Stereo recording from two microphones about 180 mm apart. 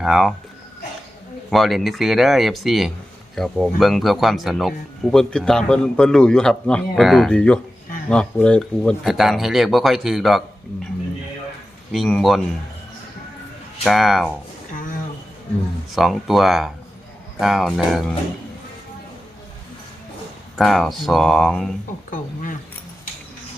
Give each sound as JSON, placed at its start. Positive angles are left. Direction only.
{"t": 0.0, "sound": "a man's voice", "side_deg": 0}
{"t": 1.5, "sound": "a man's voice", "side_deg": 0}
{"t": 11.9, "sound": "a man's voice", "side_deg": 0}
{"t": 13.8, "sound": "a man's voice", "side_deg": 0}
{"t": 16.0, "sound": "a man's voice", "side_deg": 0}
{"t": 20.6, "sound": "a man's voice", "side_deg": 0}
{"t": 22.1, "sound": "speech", "side_deg": 50}